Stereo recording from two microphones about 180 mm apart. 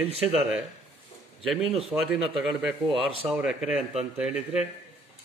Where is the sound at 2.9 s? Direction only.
30° right (ahead or behind).